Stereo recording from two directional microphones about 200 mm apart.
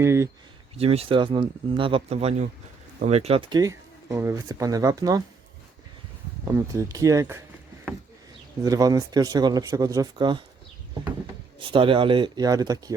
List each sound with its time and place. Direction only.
0.0 s speech: 15° right (ahead or behind)
0.8 s speech: 30° right (ahead or behind)
6.5 s speech: 15° right (ahead or behind)
8.6 s speech: 15° right (ahead or behind)
11.7 s speech: 25° right (ahead or behind)